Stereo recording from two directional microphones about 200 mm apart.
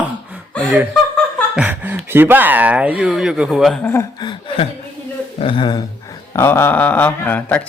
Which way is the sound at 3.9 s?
20° left (ahead or behind).